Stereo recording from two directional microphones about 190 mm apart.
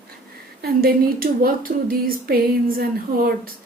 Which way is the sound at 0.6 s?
50° right (ahead or behind).